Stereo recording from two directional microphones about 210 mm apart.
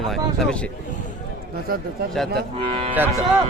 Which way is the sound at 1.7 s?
45° right (ahead or behind).